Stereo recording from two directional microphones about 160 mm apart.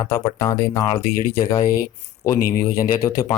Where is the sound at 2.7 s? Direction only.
20° left (ahead or behind).